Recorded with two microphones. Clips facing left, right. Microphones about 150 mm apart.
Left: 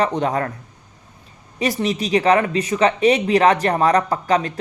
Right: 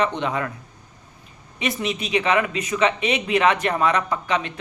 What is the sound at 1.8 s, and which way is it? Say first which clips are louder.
Speech: left 5 dB; 35° left (ahead or behind).